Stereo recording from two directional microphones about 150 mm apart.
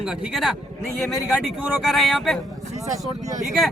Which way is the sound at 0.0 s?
5° right (ahead or behind).